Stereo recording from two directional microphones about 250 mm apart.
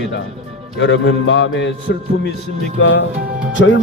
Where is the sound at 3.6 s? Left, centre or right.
Left.